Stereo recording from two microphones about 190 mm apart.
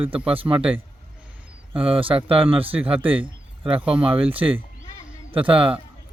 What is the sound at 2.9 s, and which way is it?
Speech, 10° right (ahead or behind).